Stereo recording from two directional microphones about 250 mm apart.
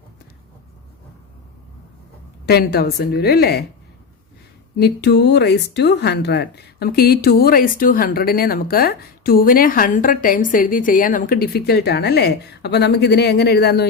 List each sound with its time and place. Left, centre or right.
2.5 s speech: left
4.8 s speech: left